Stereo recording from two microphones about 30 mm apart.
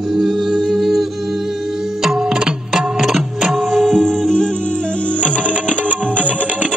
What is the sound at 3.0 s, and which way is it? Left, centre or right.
Music, centre.